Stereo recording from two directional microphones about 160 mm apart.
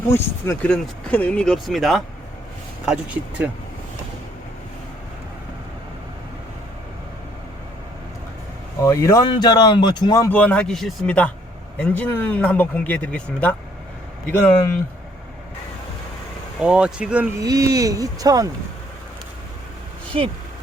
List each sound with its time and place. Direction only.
0.1 s speech: 15° left (ahead or behind); by 3.5 s 10° right (ahead or behind)
8.8 s speech: 20° left (ahead or behind)
10.3 s speech: 10° left (ahead or behind)
16.6 s speech: 5° right (ahead or behind)
17.4 s speech: 20° right (ahead or behind)